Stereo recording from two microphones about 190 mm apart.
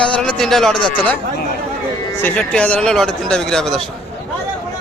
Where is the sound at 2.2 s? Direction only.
5° left (ahead or behind).